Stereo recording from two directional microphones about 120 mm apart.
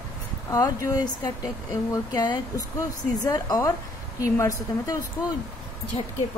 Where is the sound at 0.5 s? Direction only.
30° left (ahead or behind).